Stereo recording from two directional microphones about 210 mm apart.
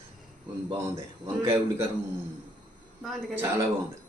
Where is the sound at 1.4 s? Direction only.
10° right (ahead or behind).